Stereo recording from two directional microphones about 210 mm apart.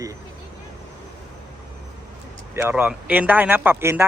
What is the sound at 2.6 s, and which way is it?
A man's voice, 5° right (ahead or behind).